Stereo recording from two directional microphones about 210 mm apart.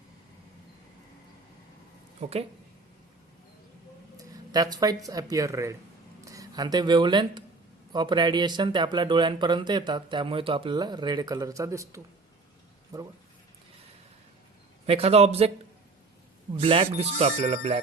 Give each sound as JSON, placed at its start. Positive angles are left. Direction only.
{"t": 2.2, "sound": "speech", "side_deg": -30}
{"t": 4.2, "sound": "a sound", "side_deg": -15}
{"t": 5.0, "sound": "speech", "side_deg": -15}
{"t": 14.8, "sound": "speech", "side_deg": -30}
{"t": 16.6, "sound": "speech", "side_deg": -25}